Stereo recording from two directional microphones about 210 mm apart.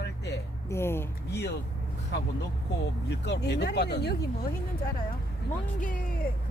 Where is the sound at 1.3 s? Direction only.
50° left (ahead or behind).